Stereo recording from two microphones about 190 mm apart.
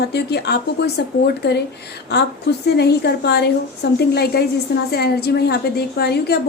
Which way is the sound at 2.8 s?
60° left (ahead or behind).